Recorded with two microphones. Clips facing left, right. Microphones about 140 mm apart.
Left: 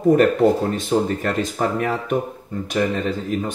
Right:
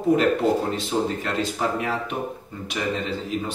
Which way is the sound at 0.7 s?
50° left (ahead or behind).